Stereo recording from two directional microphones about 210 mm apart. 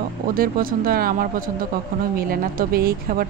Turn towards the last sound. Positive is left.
turn(degrees=-45)  # may be behind; listen again after turning